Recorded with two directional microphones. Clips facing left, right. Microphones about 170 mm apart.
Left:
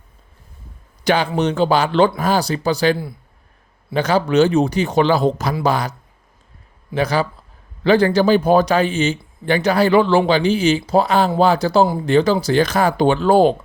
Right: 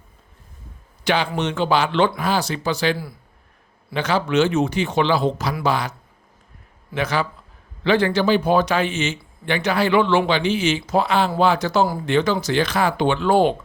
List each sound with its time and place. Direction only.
1.0 s a man's voice: 45° left (ahead or behind)
6.9 s a man's voice: 35° left (ahead or behind)